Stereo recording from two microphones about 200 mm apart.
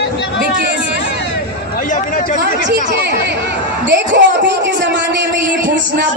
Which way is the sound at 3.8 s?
60° right (ahead or behind).